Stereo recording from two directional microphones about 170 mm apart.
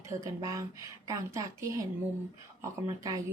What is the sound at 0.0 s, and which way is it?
Speech, 15° right (ahead or behind).